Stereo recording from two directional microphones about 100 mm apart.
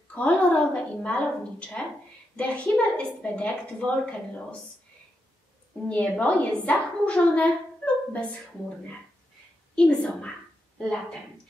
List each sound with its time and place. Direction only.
0.1 s a woman's voice: 15° left (ahead or behind)
5.9 s a woman's voice: 15° left (ahead or behind)
9.8 s a woman's voice: 10° left (ahead or behind)